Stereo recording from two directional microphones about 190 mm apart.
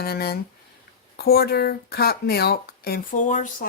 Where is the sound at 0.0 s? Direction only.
55° left (ahead or behind).